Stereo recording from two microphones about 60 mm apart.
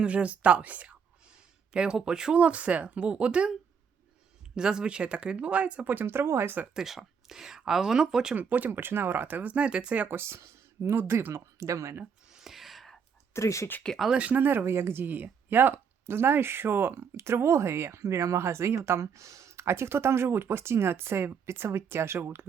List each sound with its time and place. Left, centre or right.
0.0 s speech: right
4.5 s speech: centre
5.9 s speech: right
6.7 s speech: centre
8.4 s speech: right
10.1 s speech: right
12.3 s a sound: centre
13.3 s speech: left
14.1 s speech: right
14.6 s speech: right